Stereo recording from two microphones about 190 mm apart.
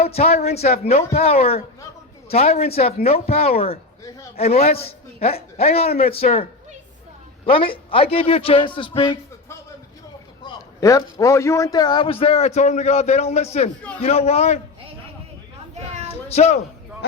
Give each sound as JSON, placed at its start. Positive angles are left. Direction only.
{"t": 0.0, "sound": "a man's voice", "side_deg": 35}
{"t": 10.4, "sound": "a man's voice", "side_deg": 20}
{"t": 16.3, "sound": "a man's voice", "side_deg": 35}